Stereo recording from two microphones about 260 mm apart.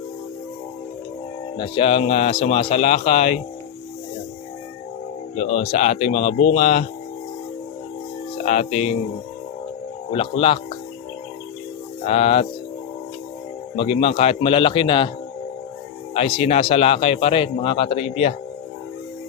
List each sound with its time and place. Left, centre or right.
1.5 s a man's voice: centre
5.4 s a man's voice: left
8.4 s a man's voice: left
10.1 s a man's voice: left
12.0 s a man's voice: left
13.7 s a man's voice: left
16.1 s a man's voice: left